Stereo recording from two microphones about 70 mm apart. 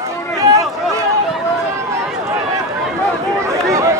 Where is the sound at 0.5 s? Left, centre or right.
Right.